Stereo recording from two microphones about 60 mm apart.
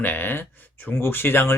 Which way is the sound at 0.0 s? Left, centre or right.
Left.